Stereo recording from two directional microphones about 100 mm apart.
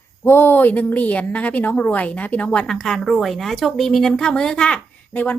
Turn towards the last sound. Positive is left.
turn(degrees=15)  # may be behind; listen again after turning